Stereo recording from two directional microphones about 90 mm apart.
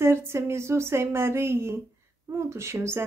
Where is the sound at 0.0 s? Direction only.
30° right (ahead or behind).